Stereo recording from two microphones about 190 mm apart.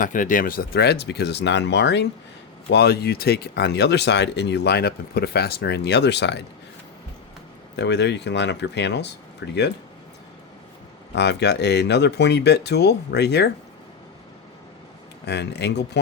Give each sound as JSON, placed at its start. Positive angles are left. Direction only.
{"t": 0.0, "sound": "speech", "side_deg": 45}
{"t": 7.8, "sound": "speech", "side_deg": 65}
{"t": 11.1, "sound": "speech", "side_deg": 65}
{"t": 15.3, "sound": "speech", "side_deg": 65}